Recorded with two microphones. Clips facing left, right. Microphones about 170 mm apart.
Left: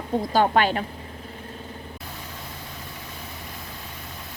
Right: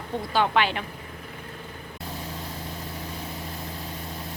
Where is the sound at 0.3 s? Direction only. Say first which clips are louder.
Left 3 dB; 45° left (ahead or behind).